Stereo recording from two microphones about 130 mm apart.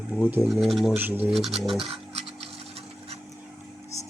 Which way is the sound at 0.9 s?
15° right (ahead or behind).